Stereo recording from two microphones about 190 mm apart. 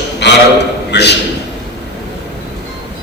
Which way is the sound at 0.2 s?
65° left (ahead or behind).